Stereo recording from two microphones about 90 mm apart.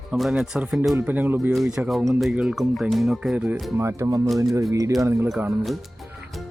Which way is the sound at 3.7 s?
35° right (ahead or behind).